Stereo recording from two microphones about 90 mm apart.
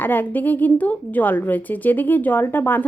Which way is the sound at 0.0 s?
20° left (ahead or behind).